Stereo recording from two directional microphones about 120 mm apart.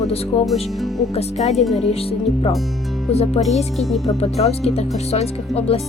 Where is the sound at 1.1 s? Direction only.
60° left (ahead or behind).